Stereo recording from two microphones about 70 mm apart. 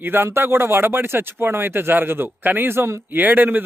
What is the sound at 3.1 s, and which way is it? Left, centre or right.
Speech, right.